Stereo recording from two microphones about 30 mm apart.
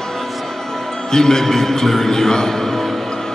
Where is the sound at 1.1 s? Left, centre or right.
Centre.